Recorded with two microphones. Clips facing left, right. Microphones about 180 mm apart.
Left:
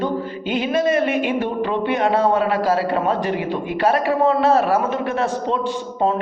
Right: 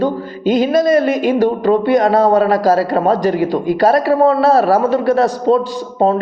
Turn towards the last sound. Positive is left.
turn(degrees=-35)  # may be behind; listen again after turning